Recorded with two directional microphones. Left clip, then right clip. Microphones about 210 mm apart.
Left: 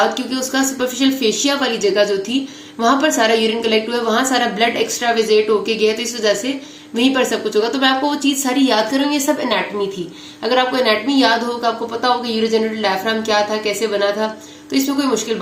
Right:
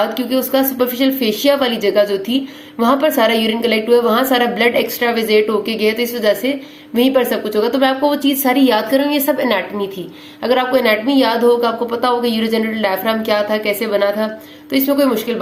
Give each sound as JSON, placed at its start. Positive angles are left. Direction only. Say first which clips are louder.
{"t": 0.3, "sound": "a woman's voice", "louder": "right 4 dB", "side_deg": -20}